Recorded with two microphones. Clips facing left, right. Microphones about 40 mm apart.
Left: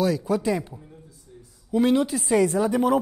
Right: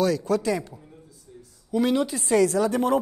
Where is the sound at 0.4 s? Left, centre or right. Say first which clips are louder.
Left 1 dB; left.